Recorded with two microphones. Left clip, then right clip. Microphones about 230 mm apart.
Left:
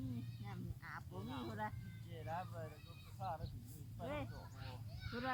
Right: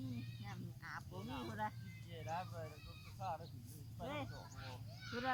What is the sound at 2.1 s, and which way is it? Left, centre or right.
Speech, right.